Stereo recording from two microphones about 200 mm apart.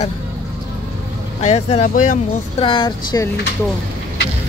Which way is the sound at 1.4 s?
35° left (ahead or behind).